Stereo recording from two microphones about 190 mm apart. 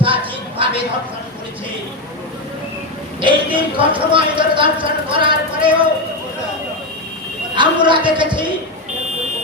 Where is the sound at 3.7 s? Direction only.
25° right (ahead or behind).